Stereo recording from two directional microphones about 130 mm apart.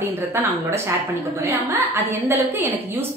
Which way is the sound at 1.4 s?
20° right (ahead or behind).